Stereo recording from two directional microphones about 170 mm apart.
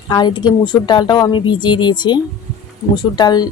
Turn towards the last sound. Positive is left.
turn(degrees=25)  # may be behind; listen again after turning